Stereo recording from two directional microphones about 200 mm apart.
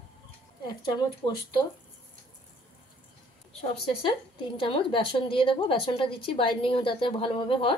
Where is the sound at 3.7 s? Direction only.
25° left (ahead or behind).